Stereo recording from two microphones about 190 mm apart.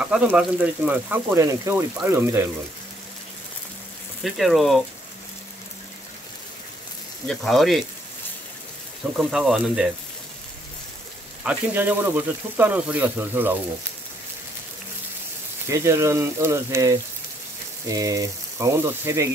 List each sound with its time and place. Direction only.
0.0 s speech: 5° right (ahead or behind)
4.2 s speech: centre (ahead or behind)
7.2 s speech: centre (ahead or behind)
9.1 s speech: 5° right (ahead or behind)
11.4 s speech: 10° right (ahead or behind)
15.7 s speech: 15° right (ahead or behind)